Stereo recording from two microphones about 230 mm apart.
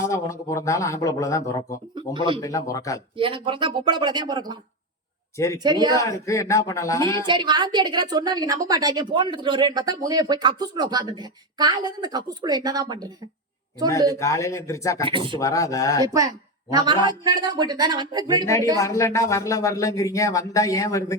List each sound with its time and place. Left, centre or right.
0.0 s speech: centre
2.0 s speech: right
2.4 s speech: centre
3.2 s speech: right
5.6 s a woman's voice: centre
6.0 s speech: centre
7.2 s a woman's voice: centre
14.2 s speech: centre
15.0 s speech: right
15.4 s speech: centre
16.0 s a woman's voice: centre
18.8 s speech: centre